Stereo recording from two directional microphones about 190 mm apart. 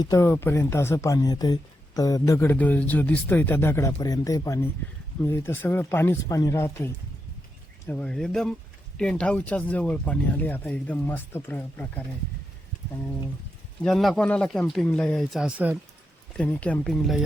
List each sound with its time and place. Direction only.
0.0 s speech: 15° left (ahead or behind)
13.8 s speech: centre (ahead or behind)
16.3 s speech: 5° left (ahead or behind)